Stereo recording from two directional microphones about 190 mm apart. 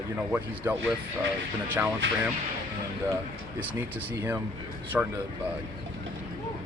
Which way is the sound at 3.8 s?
10° right (ahead or behind).